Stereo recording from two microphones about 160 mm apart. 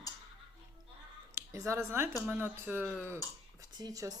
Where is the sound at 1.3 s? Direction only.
20° right (ahead or behind).